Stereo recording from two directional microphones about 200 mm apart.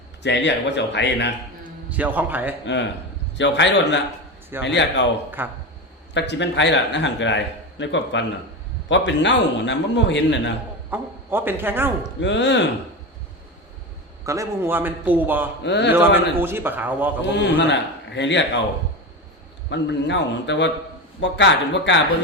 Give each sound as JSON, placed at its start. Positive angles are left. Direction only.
{"t": 0.2, "sound": "a man's voice", "side_deg": 60}
{"t": 1.9, "sound": "a man's voice", "side_deg": -10}
{"t": 2.6, "sound": "a man's voice", "side_deg": 65}
{"t": 5.4, "sound": "a man's voice", "side_deg": -10}
{"t": 6.1, "sound": "a man's voice", "side_deg": 60}
{"t": 10.9, "sound": "a man's voice", "side_deg": -10}
{"t": 12.2, "sound": "a man's voice", "side_deg": 65}
{"t": 14.3, "sound": "a man's voice", "side_deg": -15}
{"t": 15.6, "sound": "a man's voice", "side_deg": 60}
{"t": 15.9, "sound": "a man's voice", "side_deg": -10}
{"t": 17.3, "sound": "a man's voice", "side_deg": 60}
{"t": 19.7, "sound": "a man's voice", "side_deg": 60}